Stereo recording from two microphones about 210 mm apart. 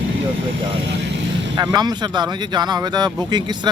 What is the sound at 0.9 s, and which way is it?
Vehicle, 60° right (ahead or behind).